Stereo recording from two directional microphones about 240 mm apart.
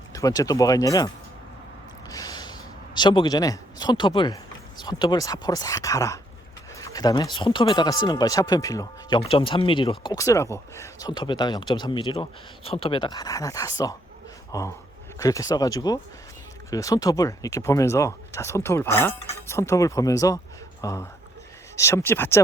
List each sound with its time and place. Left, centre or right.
0.1 s speech: centre
2.0 s a sound: centre
4.8 s speech: centre